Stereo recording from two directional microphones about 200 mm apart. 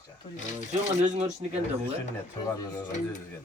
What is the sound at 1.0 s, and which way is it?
Speech, 35° right (ahead or behind).